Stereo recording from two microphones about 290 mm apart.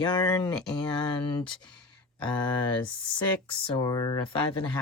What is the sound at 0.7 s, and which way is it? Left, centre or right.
Speech, centre.